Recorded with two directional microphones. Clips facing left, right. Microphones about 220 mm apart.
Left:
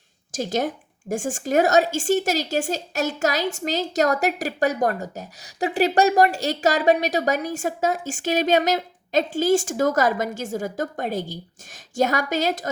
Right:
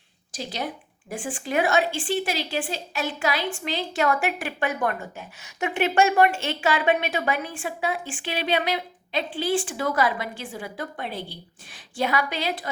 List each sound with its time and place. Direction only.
0.3 s a woman's voice: 45° left (ahead or behind)